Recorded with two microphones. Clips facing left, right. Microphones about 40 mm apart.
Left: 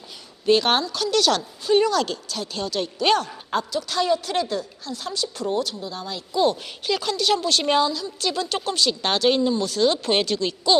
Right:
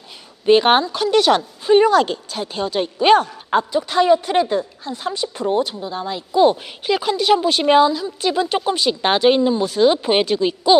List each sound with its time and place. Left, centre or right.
0.4 s a woman's voice: right